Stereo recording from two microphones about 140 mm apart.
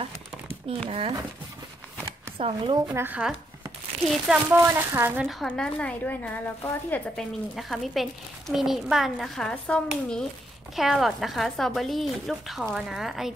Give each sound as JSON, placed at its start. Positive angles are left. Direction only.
{"t": 0.0, "sound": "crumpling", "side_deg": -40}
{"t": 0.8, "sound": "speech", "side_deg": -45}
{"t": 2.3, "sound": "speech", "side_deg": -40}
{"t": 2.9, "sound": "speech", "side_deg": -15}
{"t": 4.6, "sound": "speech", "side_deg": -15}
{"t": 5.2, "sound": "speech", "side_deg": 0}
{"t": 7.2, "sound": "a child's voice", "side_deg": 0}